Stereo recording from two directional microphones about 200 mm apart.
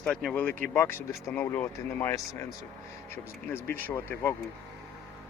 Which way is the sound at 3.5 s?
10° left (ahead or behind).